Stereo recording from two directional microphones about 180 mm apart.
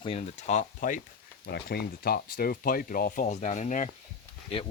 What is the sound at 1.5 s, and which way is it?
Speech, 65° left (ahead or behind).